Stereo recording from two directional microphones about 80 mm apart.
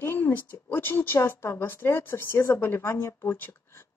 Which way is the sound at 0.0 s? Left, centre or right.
Left.